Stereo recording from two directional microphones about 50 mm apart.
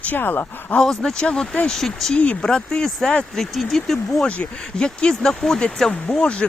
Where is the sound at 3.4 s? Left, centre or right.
Centre.